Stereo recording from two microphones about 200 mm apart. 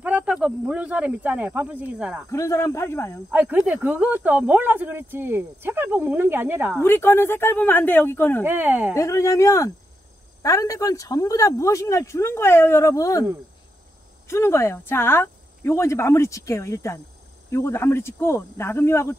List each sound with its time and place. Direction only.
0.0 s speech: 5° right (ahead or behind)
2.3 s speech: 15° left (ahead or behind)
3.3 s speech: 5° right (ahead or behind)
6.8 s speech: 10° left (ahead or behind)
8.5 s speech: 10° right (ahead or behind)
8.9 s speech: 15° left (ahead or behind)